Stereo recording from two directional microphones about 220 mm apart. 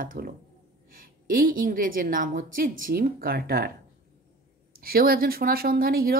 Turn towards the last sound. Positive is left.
turn(degrees=-40)  # may be behind; listen again after turning